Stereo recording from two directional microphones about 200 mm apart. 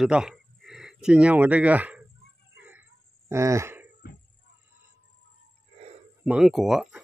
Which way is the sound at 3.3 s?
15° right (ahead or behind).